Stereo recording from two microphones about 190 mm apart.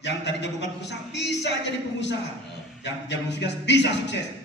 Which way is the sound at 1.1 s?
65° left (ahead or behind).